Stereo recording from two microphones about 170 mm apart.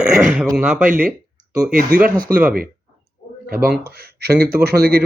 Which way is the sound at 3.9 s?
65° right (ahead or behind).